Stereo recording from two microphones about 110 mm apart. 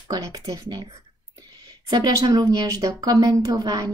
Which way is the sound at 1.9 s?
35° right (ahead or behind).